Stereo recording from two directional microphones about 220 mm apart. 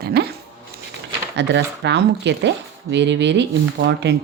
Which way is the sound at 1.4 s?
50° right (ahead or behind).